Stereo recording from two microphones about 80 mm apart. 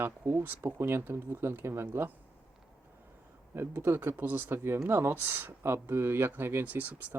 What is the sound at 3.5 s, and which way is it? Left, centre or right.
Speech, right.